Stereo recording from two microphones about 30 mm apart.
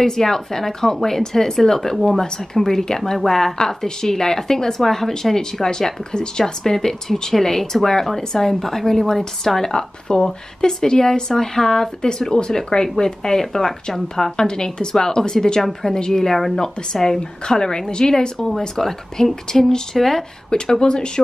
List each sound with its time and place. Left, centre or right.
0.0 s a woman's voice: centre
3.5 s a woman's voice: left
9.8 s a woman's voice: left; by 16.5 s centre
16.5 s a woman's voice: centre
20.4 s speech: left